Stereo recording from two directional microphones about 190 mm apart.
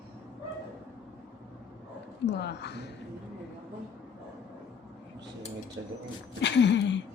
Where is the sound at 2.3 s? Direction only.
65° left (ahead or behind).